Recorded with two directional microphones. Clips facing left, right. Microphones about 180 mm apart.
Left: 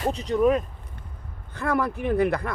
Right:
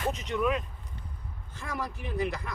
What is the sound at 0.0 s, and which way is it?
Speech, 35° left (ahead or behind).